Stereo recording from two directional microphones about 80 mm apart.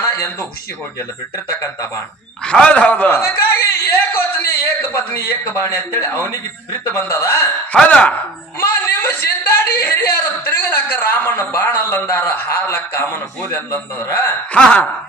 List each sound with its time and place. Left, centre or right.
0.0 s a sound: left
2.4 s speech: centre; by 4.2 s left
5.5 s a man's voice: left
7.7 s speech: centre
8.5 s speech: left
14.5 s speech: centre